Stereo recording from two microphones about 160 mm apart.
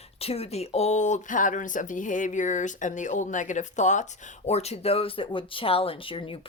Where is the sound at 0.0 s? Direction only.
40° left (ahead or behind).